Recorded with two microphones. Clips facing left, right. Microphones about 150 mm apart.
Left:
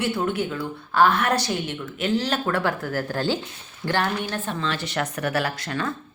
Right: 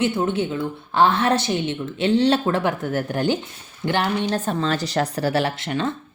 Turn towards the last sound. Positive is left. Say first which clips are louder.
# right 4 dB
turn(degrees=-25)  # may be behind; listen again after turning